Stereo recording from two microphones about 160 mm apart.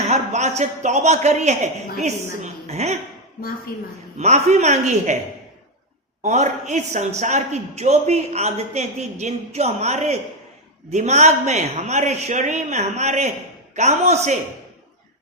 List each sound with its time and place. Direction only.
0.1 s a man's voice: 45° right (ahead or behind)
3.7 s a woman's voice: 70° left (ahead or behind)
4.2 s a man's voice: 45° right (ahead or behind)
6.2 s a man's voice: 50° right (ahead or behind)